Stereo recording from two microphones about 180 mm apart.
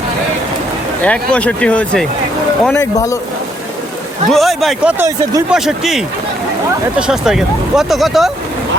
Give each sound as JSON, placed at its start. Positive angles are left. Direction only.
{"t": 1.0, "sound": "speech", "side_deg": 5}
{"t": 2.7, "sound": "speech", "side_deg": 15}
{"t": 4.3, "sound": "speech", "side_deg": 0}
{"t": 7.1, "sound": "speech", "side_deg": -5}